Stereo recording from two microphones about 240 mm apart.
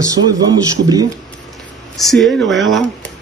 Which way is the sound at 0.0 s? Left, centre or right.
Centre.